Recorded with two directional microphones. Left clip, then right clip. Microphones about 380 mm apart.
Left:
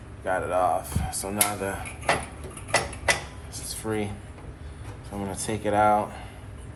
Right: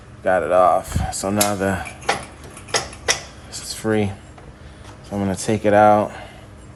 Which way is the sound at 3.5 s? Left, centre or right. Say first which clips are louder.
Right 9 dB; right.